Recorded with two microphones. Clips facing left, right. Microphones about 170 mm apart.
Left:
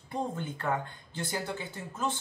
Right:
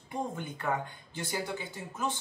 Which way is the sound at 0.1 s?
15° right (ahead or behind).